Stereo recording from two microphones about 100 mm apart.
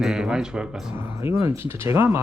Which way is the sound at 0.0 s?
5° right (ahead or behind).